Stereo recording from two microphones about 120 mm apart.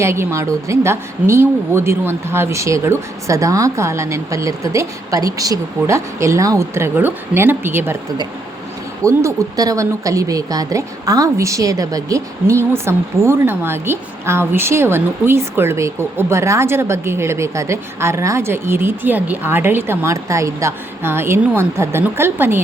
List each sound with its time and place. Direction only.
0.0 s a woman's voice: 20° right (ahead or behind)
9.0 s a woman's voice: 30° right (ahead or behind)